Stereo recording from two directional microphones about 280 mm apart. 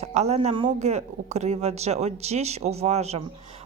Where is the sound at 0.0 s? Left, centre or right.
Right.